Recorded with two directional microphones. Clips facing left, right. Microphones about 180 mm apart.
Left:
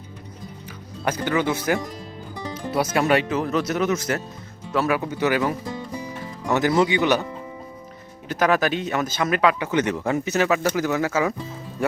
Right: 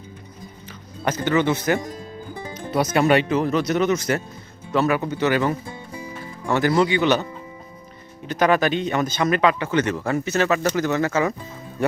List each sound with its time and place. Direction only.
1.0 s speech: 10° left (ahead or behind)
8.3 s speech: 5° left (ahead or behind)
9.6 s speech: 15° left (ahead or behind)